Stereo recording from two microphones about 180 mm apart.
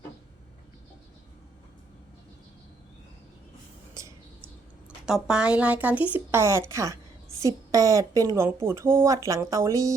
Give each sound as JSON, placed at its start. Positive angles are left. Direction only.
{"t": 5.0, "sound": "a woman's voice", "side_deg": -5}